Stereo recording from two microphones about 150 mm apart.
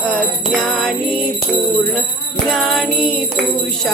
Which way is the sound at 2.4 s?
Centre (ahead or behind).